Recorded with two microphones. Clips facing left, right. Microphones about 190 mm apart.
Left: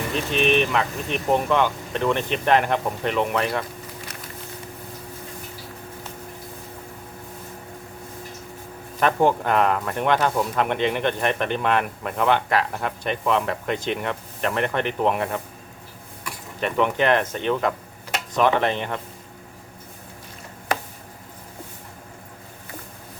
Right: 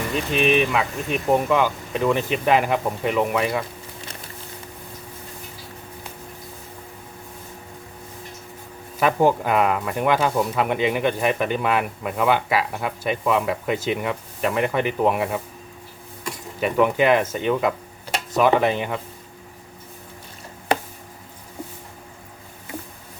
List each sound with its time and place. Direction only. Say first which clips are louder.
0.3 s speech: right 1 dB; 5° right (ahead or behind)
9.0 s speech: right 1 dB; 5° right (ahead or behind)
16.6 s speech: right 3 dB; 5° right (ahead or behind)